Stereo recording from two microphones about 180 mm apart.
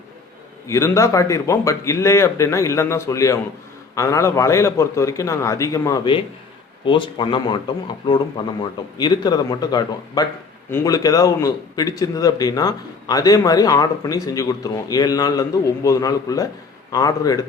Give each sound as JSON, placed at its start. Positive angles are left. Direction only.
{"t": 0.7, "sound": "a man's voice", "side_deg": 15}